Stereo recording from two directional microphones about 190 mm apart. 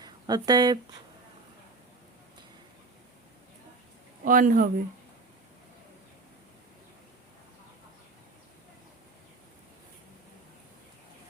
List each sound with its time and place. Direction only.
0.0 s speech: 20° right (ahead or behind)
4.2 s speech: 45° right (ahead or behind)